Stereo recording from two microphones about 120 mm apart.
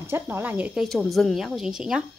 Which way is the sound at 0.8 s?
Centre (ahead or behind).